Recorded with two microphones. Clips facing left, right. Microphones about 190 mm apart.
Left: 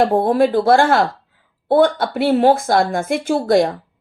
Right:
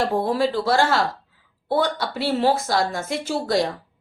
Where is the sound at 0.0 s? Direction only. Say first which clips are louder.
Left 7 dB; 55° left (ahead or behind).